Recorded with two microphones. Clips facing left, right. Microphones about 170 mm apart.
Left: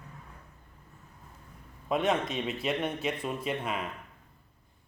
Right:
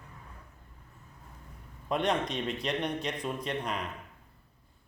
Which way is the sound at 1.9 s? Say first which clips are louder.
Left 1 dB; 5° left (ahead or behind).